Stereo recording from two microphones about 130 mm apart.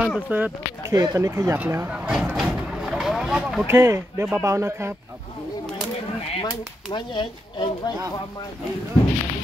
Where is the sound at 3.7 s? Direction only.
20° right (ahead or behind).